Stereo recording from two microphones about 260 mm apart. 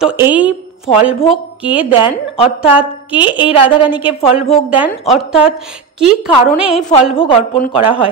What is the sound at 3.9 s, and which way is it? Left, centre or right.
A woman's voice, centre.